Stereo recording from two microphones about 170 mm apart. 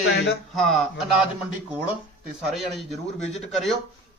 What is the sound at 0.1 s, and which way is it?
Speech, 90° left.